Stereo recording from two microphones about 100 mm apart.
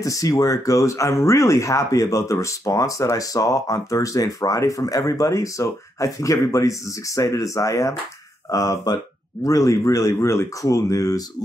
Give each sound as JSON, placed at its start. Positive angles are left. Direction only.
{"t": 0.0, "sound": "speech", "side_deg": 35}